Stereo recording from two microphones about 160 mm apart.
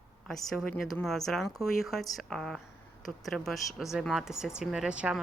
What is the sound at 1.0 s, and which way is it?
A woman's voice, centre (ahead or behind).